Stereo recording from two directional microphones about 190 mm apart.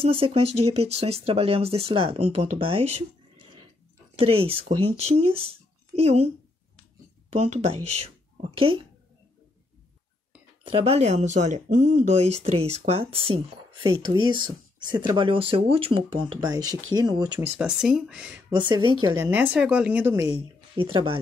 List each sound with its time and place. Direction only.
0.0 s speech: 30° right (ahead or behind)
4.2 s speech: 30° right (ahead or behind)
10.6 s speech: 30° right (ahead or behind)
17.6 s speech: 5° right (ahead or behind)
18.5 s speech: 25° right (ahead or behind)
19.3 s speech: 10° right (ahead or behind)
20.7 s speech: 30° right (ahead or behind)